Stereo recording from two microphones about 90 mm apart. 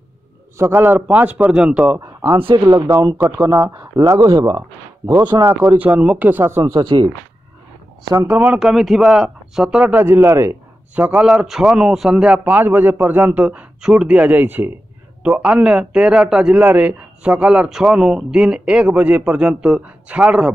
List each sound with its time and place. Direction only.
0.6 s speech: 25° right (ahead or behind)
2.5 s speech: 40° right (ahead or behind)
3.2 s speech: 35° right (ahead or behind)
5.2 s speech: 50° right (ahead or behind)
5.5 s speech: 25° right (ahead or behind)
6.8 s speech: 65° right (ahead or behind)
8.3 s speech: 20° right (ahead or behind)
8.5 s speech: 5° right (ahead or behind); by 10.6 s 30° right (ahead or behind)
11.0 s speech: 15° right (ahead or behind)